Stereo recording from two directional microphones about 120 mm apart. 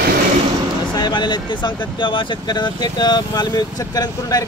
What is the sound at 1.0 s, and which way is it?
Speech, 40° left (ahead or behind).